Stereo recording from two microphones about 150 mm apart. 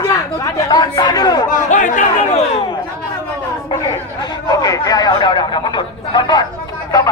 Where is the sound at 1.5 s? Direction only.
60° left (ahead or behind).